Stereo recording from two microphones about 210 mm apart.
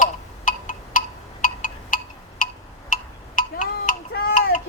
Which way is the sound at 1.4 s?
40° left (ahead or behind).